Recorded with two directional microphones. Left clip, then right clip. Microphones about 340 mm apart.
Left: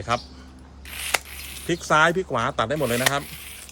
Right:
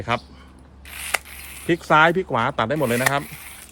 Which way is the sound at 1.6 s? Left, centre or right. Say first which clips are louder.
Right 3 dB; right.